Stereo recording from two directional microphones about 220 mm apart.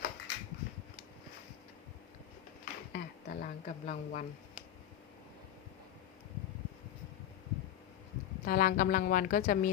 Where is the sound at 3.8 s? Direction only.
30° left (ahead or behind).